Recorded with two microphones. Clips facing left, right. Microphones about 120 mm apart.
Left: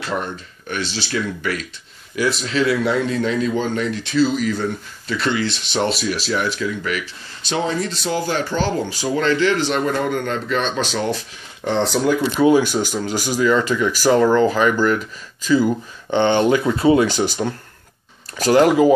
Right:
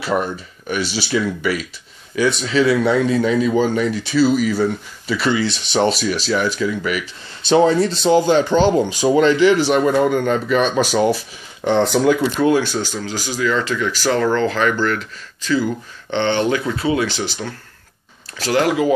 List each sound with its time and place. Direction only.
0.0 s speech: 10° right (ahead or behind)
7.4 s speech: 30° right (ahead or behind); by 12.2 s centre (ahead or behind)
12.4 s speech: 10° left (ahead or behind)
18.6 s speech: 30° left (ahead or behind)